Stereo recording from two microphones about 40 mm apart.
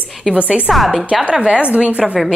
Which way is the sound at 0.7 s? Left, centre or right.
Centre.